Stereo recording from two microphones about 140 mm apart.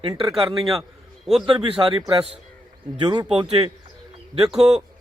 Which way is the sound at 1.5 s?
40° right (ahead or behind).